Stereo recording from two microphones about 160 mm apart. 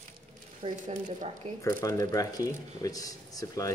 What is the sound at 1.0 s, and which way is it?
Speech, 50° right (ahead or behind).